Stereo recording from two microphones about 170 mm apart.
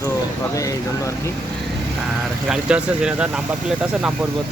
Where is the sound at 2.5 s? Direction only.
5° right (ahead or behind).